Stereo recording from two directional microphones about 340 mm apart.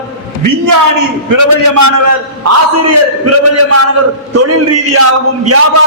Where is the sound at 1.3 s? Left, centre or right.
Right.